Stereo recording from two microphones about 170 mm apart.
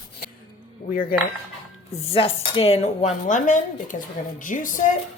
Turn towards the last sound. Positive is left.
turn(degrees=50)  # may be behind; listen again after turning